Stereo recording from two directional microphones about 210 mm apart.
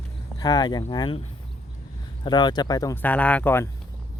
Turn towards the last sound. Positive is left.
turn(degrees=10)  # may be behind; listen again after turning